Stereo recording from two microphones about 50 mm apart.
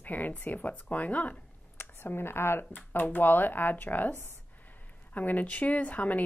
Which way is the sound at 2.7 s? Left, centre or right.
Left.